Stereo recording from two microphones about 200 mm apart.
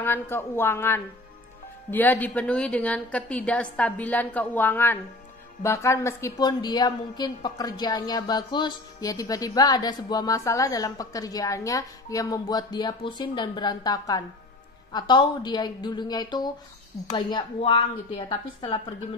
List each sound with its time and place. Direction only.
0.0 s a woman's voice: 10° left (ahead or behind); by 18.8 s 25° left (ahead or behind)